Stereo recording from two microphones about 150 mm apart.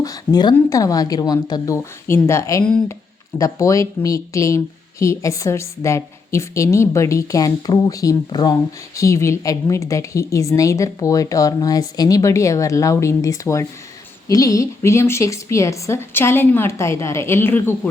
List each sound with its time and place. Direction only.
0.0 s a woman's voice: 25° left (ahead or behind)